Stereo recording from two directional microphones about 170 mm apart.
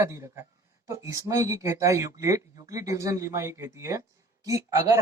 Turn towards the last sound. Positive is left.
turn(degrees=-20)  # may be behind; listen again after turning